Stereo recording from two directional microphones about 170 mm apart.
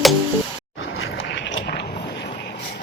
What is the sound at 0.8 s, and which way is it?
Vehicle, 90° left.